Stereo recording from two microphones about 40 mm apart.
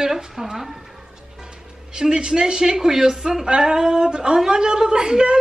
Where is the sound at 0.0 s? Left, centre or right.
Centre.